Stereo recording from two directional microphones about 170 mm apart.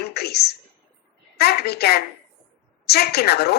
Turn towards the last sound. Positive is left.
turn(degrees=70)  # may be behind; listen again after turning